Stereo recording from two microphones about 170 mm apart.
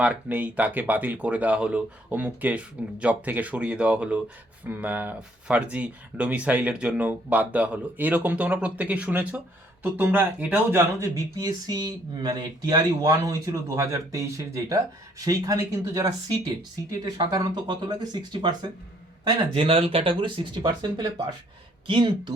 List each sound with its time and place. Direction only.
0.0 s speech: 10° right (ahead or behind); by 22.3 s 30° right (ahead or behind)